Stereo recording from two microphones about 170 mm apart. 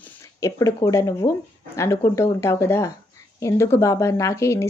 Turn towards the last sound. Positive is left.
turn(degrees=15)  # may be behind; listen again after turning